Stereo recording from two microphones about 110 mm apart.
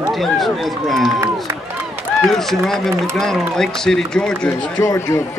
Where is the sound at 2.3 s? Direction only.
5° left (ahead or behind).